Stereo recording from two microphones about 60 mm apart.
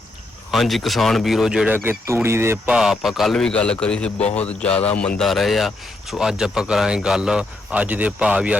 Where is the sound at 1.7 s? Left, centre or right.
Right.